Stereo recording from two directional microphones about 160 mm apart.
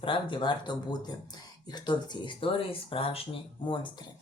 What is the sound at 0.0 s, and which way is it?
Speech, 30° left (ahead or behind).